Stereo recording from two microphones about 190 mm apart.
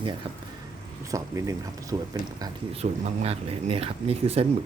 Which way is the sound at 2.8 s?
35° right (ahead or behind).